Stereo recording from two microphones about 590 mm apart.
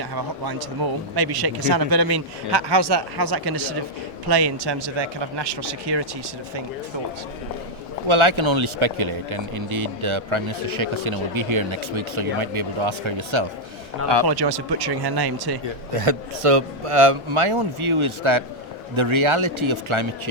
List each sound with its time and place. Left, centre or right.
1.1 s speech: right
8.0 s speech: right
15.9 s a man's voice: right